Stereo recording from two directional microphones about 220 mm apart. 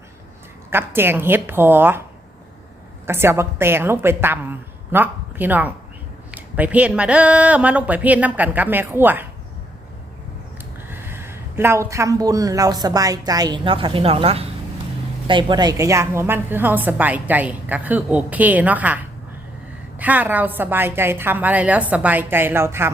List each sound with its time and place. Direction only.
0.7 s a woman's voice: 10° right (ahead or behind)
3.1 s a woman's voice: 10° right (ahead or behind)
10.8 s a man's voice: 10° right (ahead or behind)
20.0 s a woman's voice: 5° right (ahead or behind)